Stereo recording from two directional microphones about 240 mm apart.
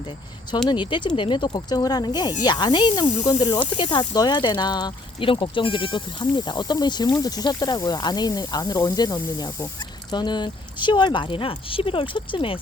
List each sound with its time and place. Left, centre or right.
0.7 s speech: centre